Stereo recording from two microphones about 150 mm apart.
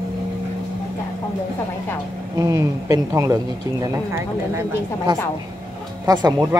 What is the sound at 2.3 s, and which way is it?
A woman's voice, 20° right (ahead or behind).